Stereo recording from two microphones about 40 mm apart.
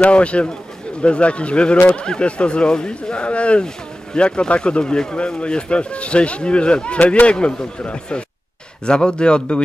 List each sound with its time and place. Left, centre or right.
0.0 s speech: left